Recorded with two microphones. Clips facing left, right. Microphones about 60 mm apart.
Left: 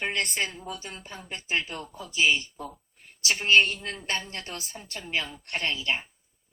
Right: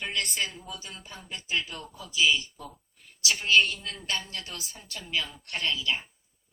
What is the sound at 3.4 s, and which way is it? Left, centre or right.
A woman's voice, left.